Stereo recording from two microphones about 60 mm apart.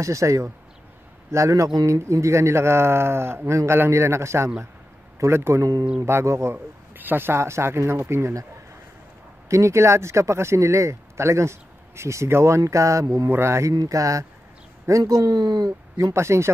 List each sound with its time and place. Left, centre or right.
0.0 s a man's voice: right
5.9 s speech: right
7.0 s speech: right
9.5 s speech: right
13.3 s speech: right
13.7 s speech: right
16.1 s speech: right